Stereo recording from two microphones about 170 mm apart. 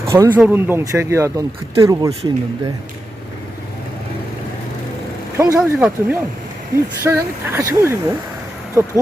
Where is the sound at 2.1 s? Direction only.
35° right (ahead or behind).